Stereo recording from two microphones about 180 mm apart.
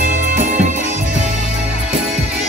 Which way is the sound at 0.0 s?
45° right (ahead or behind).